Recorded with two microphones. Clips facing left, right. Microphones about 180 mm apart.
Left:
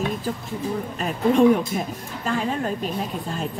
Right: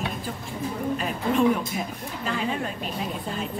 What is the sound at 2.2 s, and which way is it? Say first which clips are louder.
Speech: left 4 dB; 45° left (ahead or behind).